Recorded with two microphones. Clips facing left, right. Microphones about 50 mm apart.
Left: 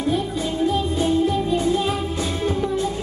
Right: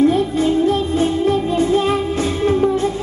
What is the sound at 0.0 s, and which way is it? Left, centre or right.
Music, right.